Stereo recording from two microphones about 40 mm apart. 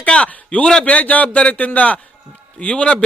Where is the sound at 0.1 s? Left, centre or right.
Left.